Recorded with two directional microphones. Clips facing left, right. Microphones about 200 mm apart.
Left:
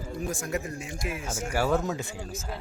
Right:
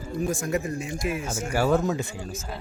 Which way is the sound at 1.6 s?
15° right (ahead or behind).